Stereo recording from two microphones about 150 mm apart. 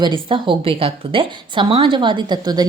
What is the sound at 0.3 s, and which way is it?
A woman's voice, 35° right (ahead or behind).